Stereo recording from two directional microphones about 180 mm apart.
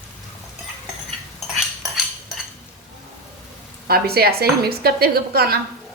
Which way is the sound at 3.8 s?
60° right (ahead or behind).